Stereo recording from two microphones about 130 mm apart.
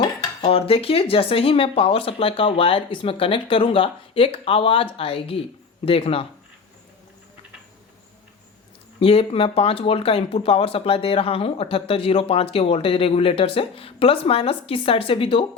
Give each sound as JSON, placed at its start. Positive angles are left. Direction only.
{"t": 0.4, "sound": "speech", "side_deg": 45}
{"t": 9.0, "sound": "speech", "side_deg": 45}